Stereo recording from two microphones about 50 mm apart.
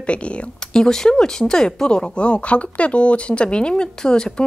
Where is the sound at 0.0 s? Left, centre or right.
Left.